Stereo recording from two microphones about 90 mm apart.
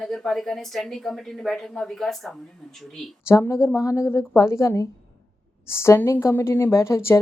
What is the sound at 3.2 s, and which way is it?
A woman's voice, 30° left (ahead or behind).